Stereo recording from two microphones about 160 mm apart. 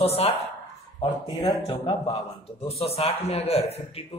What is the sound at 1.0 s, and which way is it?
A man's voice, 30° left (ahead or behind).